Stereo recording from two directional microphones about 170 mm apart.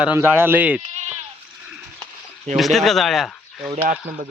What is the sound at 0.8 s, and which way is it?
Sheep, 40° right (ahead or behind).